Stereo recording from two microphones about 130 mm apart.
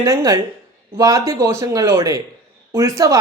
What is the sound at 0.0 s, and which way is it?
A man's voice, 25° right (ahead or behind).